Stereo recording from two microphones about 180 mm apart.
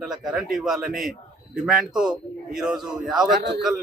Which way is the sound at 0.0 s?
Centre (ahead or behind).